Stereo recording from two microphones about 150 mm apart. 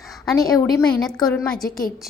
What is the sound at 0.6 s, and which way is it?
Speech, 5° left (ahead or behind).